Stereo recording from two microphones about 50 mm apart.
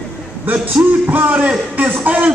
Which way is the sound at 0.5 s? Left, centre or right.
Right.